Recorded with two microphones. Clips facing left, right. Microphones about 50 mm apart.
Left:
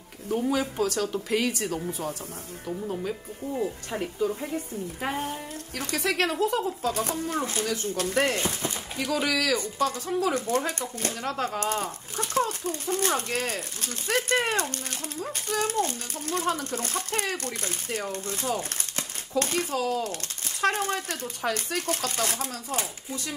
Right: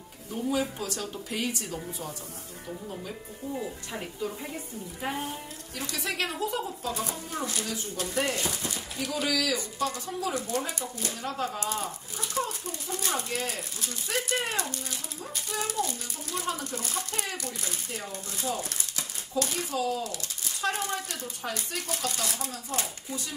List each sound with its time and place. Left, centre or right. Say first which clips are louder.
0.3 s a child's voice: left 3 dB; left
3.4 s speech: left 3 dB; left
4.2 s a woman's voice: left 7 dB; centre
5.0 s a child's voice: left 2 dB; left
7.3 s speech: left 1 dB; left
7.6 s a child's voice: left 6 dB; left
8.4 s speech: left 3 dB; left
8.9 s a child's voice: left 3 dB; left